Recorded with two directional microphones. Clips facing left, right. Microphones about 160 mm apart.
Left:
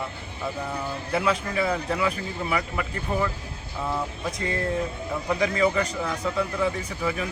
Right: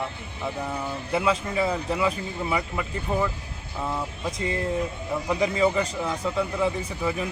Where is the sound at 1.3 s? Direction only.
25° right (ahead or behind).